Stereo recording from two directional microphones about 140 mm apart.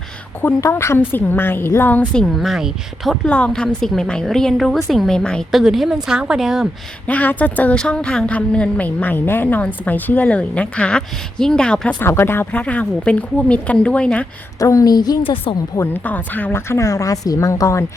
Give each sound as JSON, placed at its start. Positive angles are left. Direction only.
{"t": 0.4, "sound": "a woman's voice", "side_deg": 20}
{"t": 3.2, "sound": "a woman's voice", "side_deg": 10}
{"t": 7.1, "sound": "a woman's voice", "side_deg": 10}
{"t": 14.6, "sound": "a woman's voice", "side_deg": 25}
{"t": 15.7, "sound": "a woman's voice", "side_deg": 15}